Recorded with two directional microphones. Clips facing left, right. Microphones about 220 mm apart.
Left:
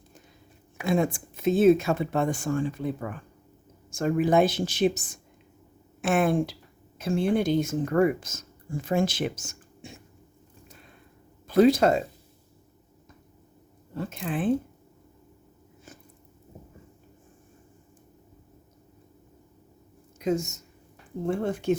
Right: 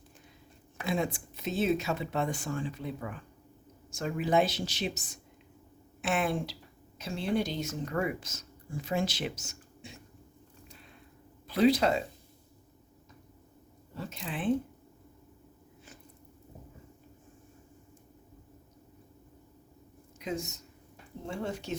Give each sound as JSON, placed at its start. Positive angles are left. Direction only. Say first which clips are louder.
{"t": 0.9, "sound": "speech", "louder": "left 7 dB", "side_deg": 50}
{"t": 11.4, "sound": "speech", "louder": "left 6 dB", "side_deg": 45}
{"t": 13.9, "sound": "speech", "louder": "left 8 dB", "side_deg": 55}
{"t": 20.1, "sound": "speech", "louder": "left 9 dB", "side_deg": 45}